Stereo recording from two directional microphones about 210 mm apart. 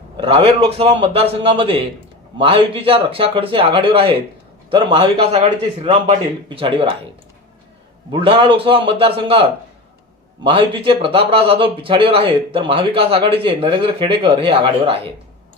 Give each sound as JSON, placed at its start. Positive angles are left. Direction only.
{"t": 0.2, "sound": "a man's voice", "side_deg": -25}
{"t": 8.1, "sound": "a man's voice", "side_deg": -25}